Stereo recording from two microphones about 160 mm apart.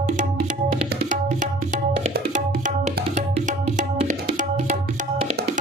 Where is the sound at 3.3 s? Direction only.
55° right (ahead or behind).